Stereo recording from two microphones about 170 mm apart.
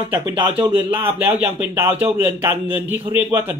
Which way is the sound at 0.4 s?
30° right (ahead or behind).